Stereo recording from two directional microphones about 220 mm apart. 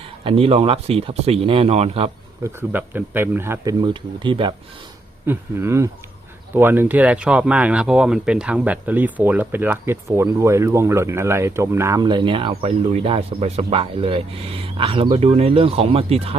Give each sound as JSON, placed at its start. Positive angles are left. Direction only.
{"t": 0.3, "sound": "speech", "side_deg": -25}
{"t": 2.4, "sound": "speech", "side_deg": -10}
{"t": 5.2, "sound": "speech", "side_deg": -10}